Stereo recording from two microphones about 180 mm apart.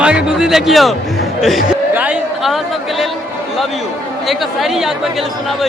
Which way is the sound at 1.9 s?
5° right (ahead or behind).